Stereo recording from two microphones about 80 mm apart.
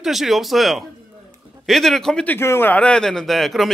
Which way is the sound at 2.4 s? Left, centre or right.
Left.